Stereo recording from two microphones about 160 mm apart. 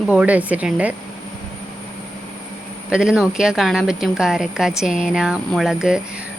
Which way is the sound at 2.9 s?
5° right (ahead or behind).